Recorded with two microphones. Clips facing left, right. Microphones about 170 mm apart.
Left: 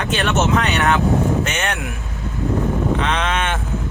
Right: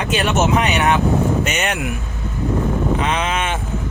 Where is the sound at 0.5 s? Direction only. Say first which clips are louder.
Right 1 dB; 20° right (ahead or behind).